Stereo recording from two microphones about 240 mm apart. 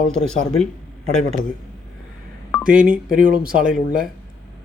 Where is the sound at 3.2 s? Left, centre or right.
Right.